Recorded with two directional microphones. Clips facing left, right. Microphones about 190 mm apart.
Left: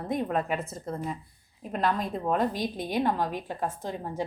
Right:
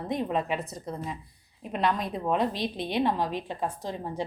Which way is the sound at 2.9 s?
Centre (ahead or behind).